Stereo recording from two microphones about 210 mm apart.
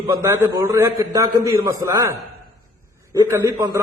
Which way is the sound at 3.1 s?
15° right (ahead or behind).